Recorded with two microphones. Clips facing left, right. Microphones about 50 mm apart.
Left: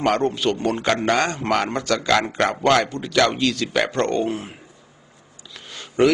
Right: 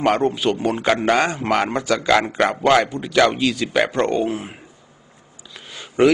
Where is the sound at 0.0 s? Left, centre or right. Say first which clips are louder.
Right 2 dB; centre.